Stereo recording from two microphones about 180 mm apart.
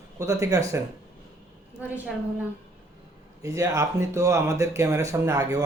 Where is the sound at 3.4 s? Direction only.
20° right (ahead or behind).